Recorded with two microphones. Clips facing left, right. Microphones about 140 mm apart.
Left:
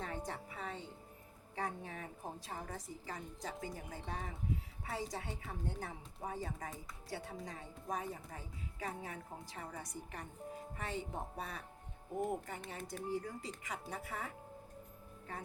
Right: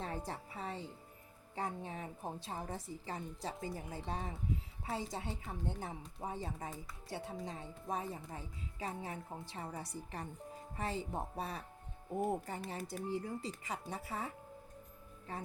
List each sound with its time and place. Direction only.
0.0 s music: 30° right (ahead or behind)
1.5 s speech: 25° right (ahead or behind)